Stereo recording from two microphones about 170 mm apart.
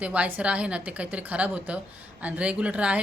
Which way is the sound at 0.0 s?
10° right (ahead or behind).